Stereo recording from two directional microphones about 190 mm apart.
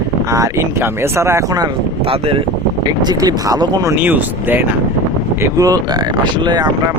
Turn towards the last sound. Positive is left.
turn(degrees=-25)  # may be behind; listen again after turning